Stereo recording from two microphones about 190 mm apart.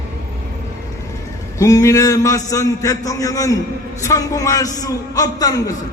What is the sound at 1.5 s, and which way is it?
A man's voice, 15° left (ahead or behind).